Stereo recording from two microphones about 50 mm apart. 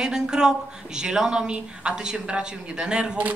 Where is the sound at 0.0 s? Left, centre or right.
Centre.